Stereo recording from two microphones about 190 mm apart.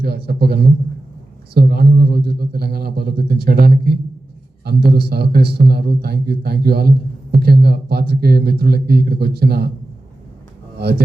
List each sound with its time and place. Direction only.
0.0 s a man's voice: 55° right (ahead or behind)
10.8 s speech: 55° right (ahead or behind)